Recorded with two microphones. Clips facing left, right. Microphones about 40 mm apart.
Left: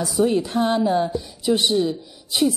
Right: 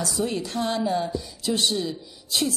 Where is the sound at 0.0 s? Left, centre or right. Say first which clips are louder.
Left 7 dB; left.